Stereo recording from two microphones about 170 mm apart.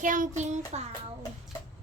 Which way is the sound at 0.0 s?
50° right (ahead or behind).